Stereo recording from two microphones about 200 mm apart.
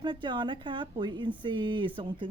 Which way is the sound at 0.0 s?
25° right (ahead or behind).